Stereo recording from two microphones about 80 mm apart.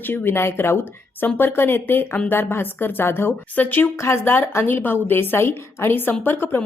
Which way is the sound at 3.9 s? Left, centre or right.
Left.